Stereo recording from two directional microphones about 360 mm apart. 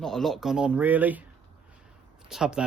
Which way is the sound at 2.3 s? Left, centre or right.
Centre.